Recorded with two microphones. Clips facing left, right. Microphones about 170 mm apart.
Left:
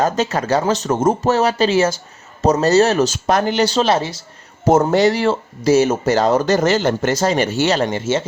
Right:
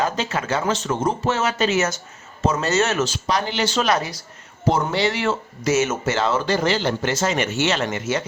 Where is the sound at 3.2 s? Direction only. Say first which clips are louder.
Left 6 dB; 50° left (ahead or behind); by 4.3 s 25° left (ahead or behind).